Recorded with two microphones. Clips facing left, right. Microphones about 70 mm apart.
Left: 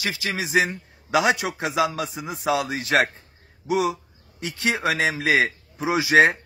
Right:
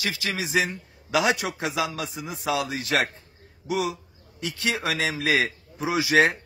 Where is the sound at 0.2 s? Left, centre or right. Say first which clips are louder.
Left 4 dB; left.